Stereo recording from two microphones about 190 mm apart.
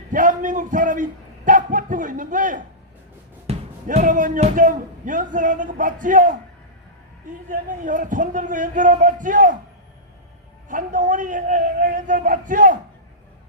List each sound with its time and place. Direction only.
0.1 s a man's voice: 45° right (ahead or behind)
7.4 s speech: 45° right (ahead or behind)
10.7 s speech: 45° right (ahead or behind)